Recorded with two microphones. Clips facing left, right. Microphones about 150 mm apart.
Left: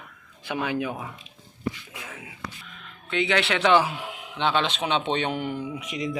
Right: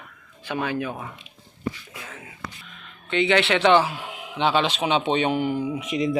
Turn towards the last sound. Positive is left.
turn(degrees=-25)  # may be behind; listen again after turning